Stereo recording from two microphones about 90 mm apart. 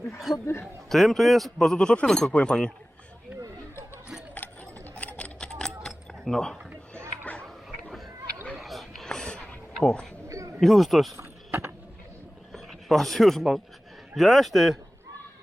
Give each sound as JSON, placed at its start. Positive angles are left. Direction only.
{"t": 0.3, "sound": "speech", "side_deg": 0}
{"t": 4.4, "sound": "a sound", "side_deg": 15}
{"t": 10.2, "sound": "a sound", "side_deg": -35}
{"t": 10.6, "sound": "speech", "side_deg": 0}
{"t": 11.2, "sound": "mechanisms", "side_deg": -20}
{"t": 12.5, "sound": "speech", "side_deg": 5}